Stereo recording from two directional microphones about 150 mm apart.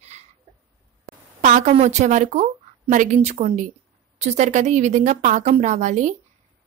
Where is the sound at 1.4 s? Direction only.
55° right (ahead or behind).